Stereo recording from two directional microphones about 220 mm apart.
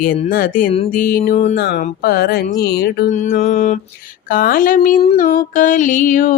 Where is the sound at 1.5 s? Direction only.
40° left (ahead or behind).